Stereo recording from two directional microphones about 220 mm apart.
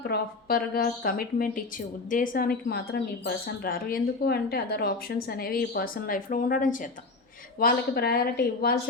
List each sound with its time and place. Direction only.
0.0 s speech: 45° left (ahead or behind)